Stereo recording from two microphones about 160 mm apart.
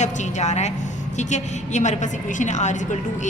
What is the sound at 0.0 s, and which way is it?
A woman's voice, 45° left (ahead or behind).